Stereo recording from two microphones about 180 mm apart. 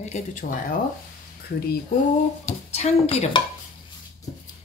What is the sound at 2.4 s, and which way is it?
Speech, 35° left (ahead or behind).